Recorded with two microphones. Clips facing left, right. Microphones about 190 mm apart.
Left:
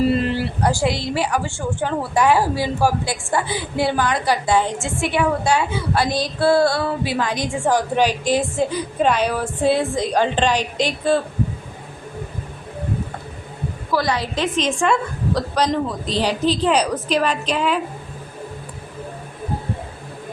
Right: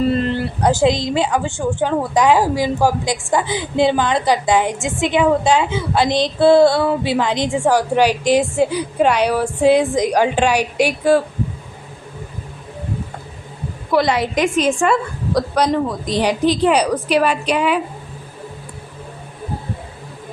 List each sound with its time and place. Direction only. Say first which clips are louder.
0.0 s a sound: right 1 dB; 5° left (ahead or behind)
0.6 s a woman's voice: right 7 dB; 20° right (ahead or behind)
7.7 s a woman's voice: right 2 dB; 10° right (ahead or behind)
13.9 s a woman's voice: right 5 dB; 20° right (ahead or behind)
14.4 s a woman's voice: right 2 dB; 10° right (ahead or behind)